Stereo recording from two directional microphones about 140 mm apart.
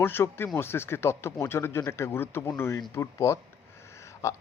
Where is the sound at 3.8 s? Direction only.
20° left (ahead or behind).